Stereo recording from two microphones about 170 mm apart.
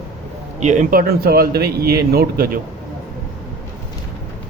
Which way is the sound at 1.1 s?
65° right (ahead or behind).